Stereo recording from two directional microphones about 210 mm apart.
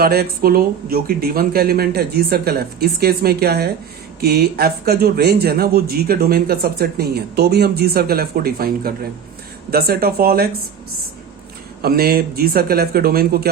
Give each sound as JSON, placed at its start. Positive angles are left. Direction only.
{"t": 0.0, "sound": "speech", "side_deg": -45}
{"t": 11.8, "sound": "speech", "side_deg": -45}